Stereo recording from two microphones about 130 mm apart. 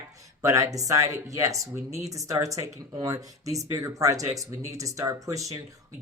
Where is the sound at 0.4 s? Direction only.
25° right (ahead or behind).